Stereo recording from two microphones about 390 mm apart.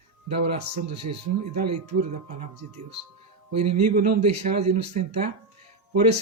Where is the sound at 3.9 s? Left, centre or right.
Right.